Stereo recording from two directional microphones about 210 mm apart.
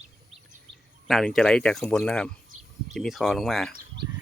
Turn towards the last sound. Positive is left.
turn(degrees=0)  # may be behind; listen again after turning